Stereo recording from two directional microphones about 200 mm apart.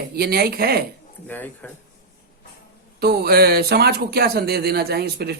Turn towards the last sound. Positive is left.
turn(degrees=-55)  # may be behind; listen again after turning